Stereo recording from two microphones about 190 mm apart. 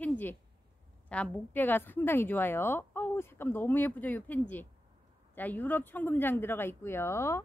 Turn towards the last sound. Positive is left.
turn(degrees=15)  # may be behind; listen again after turning